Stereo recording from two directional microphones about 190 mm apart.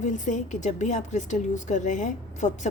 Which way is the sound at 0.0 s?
40° left (ahead or behind).